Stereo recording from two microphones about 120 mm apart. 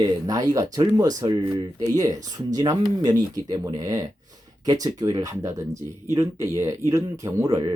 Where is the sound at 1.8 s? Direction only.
30° right (ahead or behind).